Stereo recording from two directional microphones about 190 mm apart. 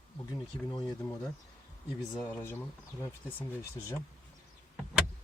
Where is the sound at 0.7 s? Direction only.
25° left (ahead or behind).